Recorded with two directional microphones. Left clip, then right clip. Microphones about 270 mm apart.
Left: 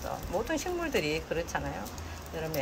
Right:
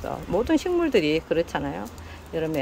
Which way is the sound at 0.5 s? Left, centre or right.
Right.